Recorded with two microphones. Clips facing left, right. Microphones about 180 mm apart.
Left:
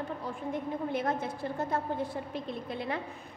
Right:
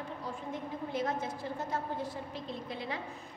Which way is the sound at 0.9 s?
60° left (ahead or behind).